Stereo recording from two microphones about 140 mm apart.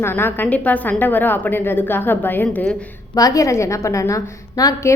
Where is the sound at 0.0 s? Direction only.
15° left (ahead or behind).